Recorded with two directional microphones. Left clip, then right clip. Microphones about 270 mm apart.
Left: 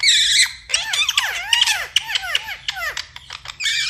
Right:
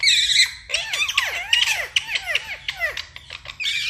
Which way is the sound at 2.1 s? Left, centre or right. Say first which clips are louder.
Left 2 dB; centre.